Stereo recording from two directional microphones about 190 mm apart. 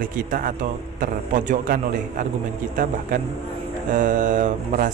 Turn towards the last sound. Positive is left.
turn(degrees=-40)  # may be behind; listen again after turning